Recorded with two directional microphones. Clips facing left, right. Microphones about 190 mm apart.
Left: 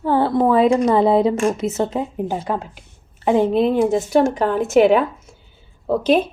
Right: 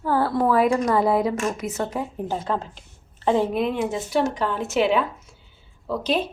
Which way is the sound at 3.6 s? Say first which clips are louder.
Left 8 dB; 40° left (ahead or behind).